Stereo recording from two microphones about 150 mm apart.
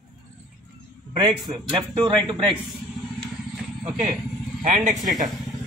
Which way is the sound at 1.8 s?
30° right (ahead or behind).